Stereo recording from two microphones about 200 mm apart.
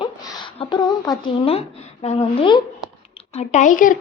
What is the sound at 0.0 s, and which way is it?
A woman's voice, 25° left (ahead or behind).